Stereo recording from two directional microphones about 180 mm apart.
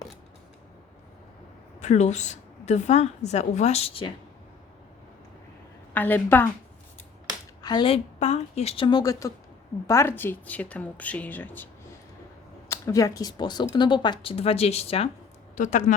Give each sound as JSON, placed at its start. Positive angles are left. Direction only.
{"t": 1.8, "sound": "a woman's voice", "side_deg": 40}
{"t": 5.9, "sound": "speech", "side_deg": 10}
{"t": 7.6, "sound": "speech", "side_deg": 25}
{"t": 15.5, "sound": "speech", "side_deg": 45}